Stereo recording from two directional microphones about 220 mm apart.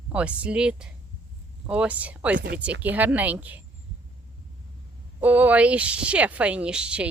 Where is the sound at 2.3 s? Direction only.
45° right (ahead or behind).